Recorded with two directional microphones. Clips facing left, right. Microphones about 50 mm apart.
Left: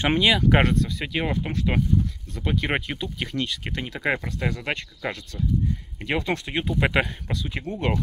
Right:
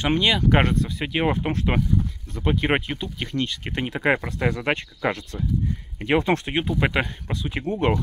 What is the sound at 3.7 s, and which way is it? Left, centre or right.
Speech, right.